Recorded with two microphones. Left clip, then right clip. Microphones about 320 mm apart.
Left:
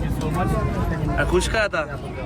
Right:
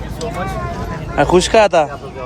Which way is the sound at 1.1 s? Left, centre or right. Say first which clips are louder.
Right 11 dB; centre.